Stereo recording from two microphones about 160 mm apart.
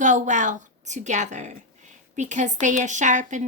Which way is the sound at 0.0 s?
50° right (ahead or behind).